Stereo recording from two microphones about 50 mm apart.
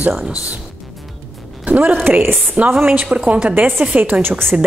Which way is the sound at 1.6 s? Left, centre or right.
Right.